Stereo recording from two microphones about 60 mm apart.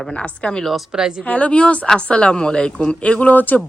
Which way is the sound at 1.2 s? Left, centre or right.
Left.